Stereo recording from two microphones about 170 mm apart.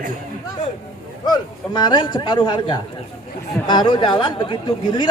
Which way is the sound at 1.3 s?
25° left (ahead or behind).